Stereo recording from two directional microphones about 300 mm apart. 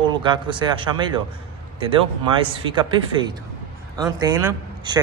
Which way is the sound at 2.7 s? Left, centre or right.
Centre.